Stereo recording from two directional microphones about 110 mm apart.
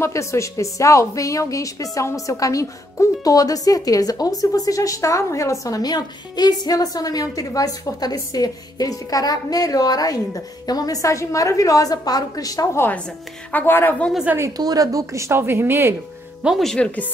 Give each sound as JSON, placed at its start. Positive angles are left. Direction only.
{"t": 0.0, "sound": "a woman's voice", "side_deg": 25}
{"t": 13.5, "sound": "speech", "side_deg": 20}
{"t": 14.2, "sound": "a woman's voice", "side_deg": -20}
{"t": 14.6, "sound": "a woman's voice", "side_deg": -35}
{"t": 16.4, "sound": "speech", "side_deg": 0}